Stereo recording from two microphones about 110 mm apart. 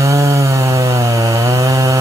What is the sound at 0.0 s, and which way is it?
Chainsaw, 30° right (ahead or behind).